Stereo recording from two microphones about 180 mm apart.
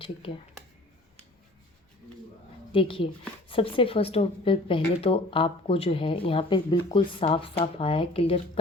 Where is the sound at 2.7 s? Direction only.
30° left (ahead or behind).